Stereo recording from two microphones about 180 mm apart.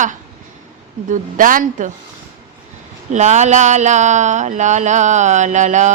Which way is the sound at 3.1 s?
40° right (ahead or behind).